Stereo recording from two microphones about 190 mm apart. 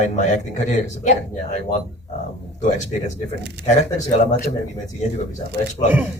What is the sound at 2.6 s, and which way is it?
Speech, 40° left (ahead or behind).